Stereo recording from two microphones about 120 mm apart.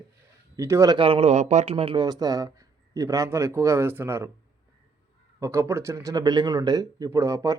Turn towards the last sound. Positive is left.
turn(degrees=-25)  # may be behind; listen again after turning